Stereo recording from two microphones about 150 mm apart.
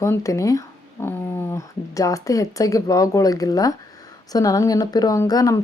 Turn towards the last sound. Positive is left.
turn(degrees=25)  # may be behind; listen again after turning